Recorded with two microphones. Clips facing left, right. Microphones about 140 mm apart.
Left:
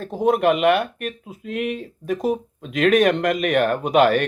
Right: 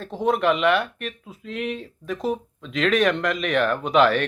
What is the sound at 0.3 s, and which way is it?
Speech, 50° left (ahead or behind).